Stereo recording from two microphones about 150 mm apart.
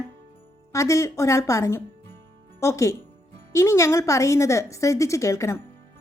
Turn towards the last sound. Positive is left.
turn(degrees=20)  # may be behind; listen again after turning